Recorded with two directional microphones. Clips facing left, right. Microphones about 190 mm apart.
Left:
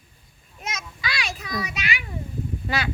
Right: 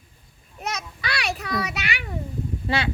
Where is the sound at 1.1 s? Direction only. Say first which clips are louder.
Right 4 dB; 65° right (ahead or behind).